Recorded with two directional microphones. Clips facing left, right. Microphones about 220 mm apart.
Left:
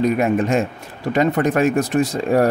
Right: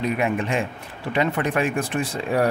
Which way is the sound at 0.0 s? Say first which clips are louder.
Left 6 dB; 45° left (ahead or behind).